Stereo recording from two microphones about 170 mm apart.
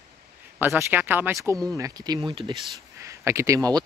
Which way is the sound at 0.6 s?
15° right (ahead or behind).